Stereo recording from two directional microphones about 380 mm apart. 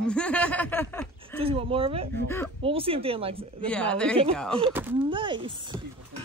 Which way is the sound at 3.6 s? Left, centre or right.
Centre.